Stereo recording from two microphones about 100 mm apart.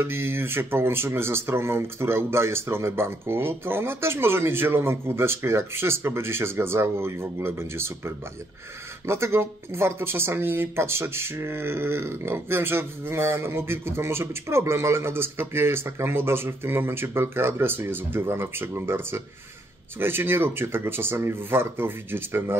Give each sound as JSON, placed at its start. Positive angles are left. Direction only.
{"t": 0.0, "sound": "speech", "side_deg": -25}